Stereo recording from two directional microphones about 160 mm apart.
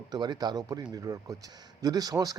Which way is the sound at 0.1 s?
25° right (ahead or behind).